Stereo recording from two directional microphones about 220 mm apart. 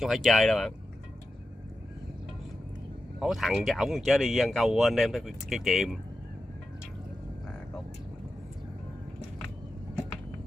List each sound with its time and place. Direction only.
0.0 s speech: centre (ahead or behind)
3.2 s speech: centre (ahead or behind)